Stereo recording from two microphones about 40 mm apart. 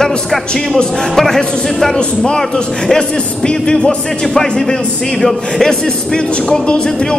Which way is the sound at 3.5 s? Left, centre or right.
Centre.